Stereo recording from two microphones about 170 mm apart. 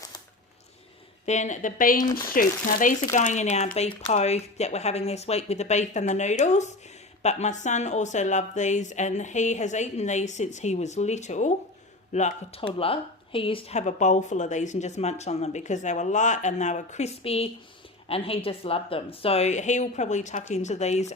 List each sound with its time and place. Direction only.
1.2 s speech: 45° left (ahead or behind)